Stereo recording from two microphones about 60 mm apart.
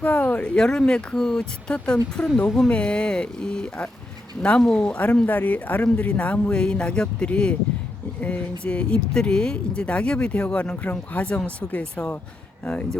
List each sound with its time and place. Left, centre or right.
0.0 s speech: left